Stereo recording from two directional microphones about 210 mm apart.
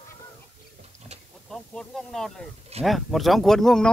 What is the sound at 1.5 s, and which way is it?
Speech, centre (ahead or behind).